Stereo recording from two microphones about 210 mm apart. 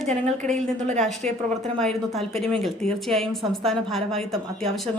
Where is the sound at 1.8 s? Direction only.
Centre (ahead or behind).